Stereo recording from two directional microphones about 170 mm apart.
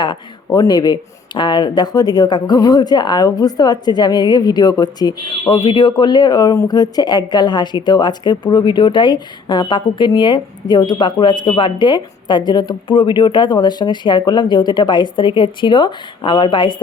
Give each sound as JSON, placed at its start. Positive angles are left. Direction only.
{"t": 0.0, "sound": "speech", "side_deg": 25}